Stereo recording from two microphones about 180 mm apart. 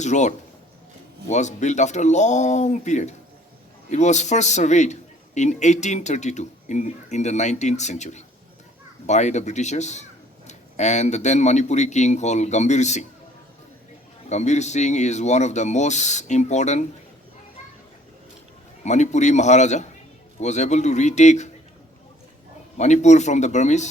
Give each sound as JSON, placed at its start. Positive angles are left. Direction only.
{"t": 0.0, "sound": "a man's voice", "side_deg": 40}
{"t": 14.3, "sound": "a man's voice", "side_deg": 40}
{"t": 18.9, "sound": "a man's voice", "side_deg": 40}
{"t": 22.8, "sound": "a man's voice", "side_deg": 40}